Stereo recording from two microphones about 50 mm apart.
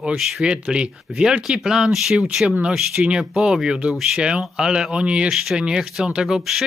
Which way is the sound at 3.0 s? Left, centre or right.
Right.